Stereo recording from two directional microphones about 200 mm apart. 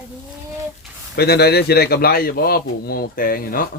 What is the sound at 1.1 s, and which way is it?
A man's voice, 55° left (ahead or behind).